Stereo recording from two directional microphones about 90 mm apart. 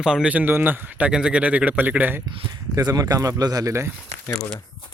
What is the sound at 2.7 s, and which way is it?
Speech, 40° right (ahead or behind).